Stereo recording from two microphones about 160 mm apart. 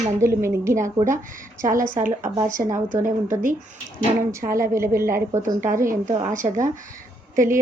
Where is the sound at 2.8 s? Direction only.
55° right (ahead or behind).